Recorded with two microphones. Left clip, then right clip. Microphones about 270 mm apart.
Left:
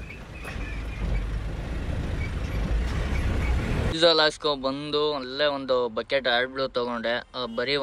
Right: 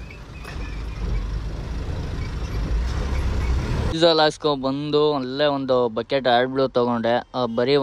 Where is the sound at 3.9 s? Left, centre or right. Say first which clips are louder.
Right 3 dB; centre.